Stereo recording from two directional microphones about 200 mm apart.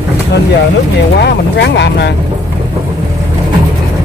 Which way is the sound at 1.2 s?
55° left (ahead or behind).